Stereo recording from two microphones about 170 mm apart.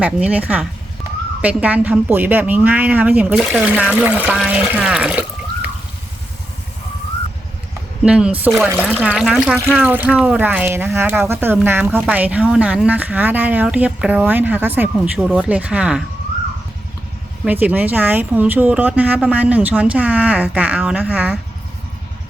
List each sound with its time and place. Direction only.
0.0 s speech: 10° right (ahead or behind)
8.0 s speech: 5° right (ahead or behind)
8.7 s speech: 10° left (ahead or behind)
9.0 s speech: 5° right (ahead or behind)
17.4 s speech: 10° right (ahead or behind)